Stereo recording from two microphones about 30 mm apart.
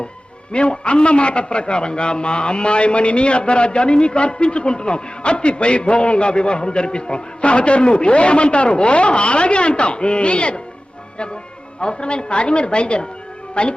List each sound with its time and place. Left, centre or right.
0.5 s a man's voice: left
11.8 s a man's voice: left